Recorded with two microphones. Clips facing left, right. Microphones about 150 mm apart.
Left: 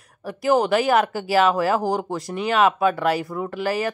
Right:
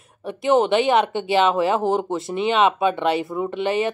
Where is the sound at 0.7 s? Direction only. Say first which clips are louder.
Right 1 dB; 25° right (ahead or behind).